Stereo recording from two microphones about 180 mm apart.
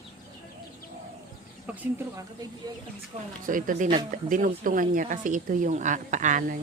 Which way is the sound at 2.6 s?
20° right (ahead or behind).